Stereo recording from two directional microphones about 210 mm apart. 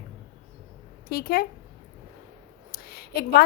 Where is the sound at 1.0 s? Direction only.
45° left (ahead or behind).